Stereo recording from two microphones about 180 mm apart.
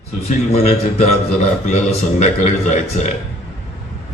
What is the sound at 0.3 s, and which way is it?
Speech, 35° left (ahead or behind).